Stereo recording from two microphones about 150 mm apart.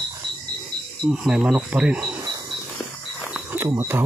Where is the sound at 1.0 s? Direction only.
5° right (ahead or behind).